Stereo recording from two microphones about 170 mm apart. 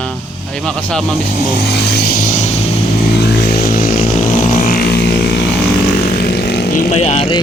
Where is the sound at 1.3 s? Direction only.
65° left (ahead or behind); by 2.6 s 45° left (ahead or behind).